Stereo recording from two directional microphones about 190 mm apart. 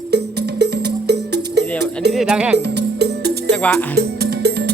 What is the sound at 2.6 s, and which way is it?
Music, 60° right (ahead or behind).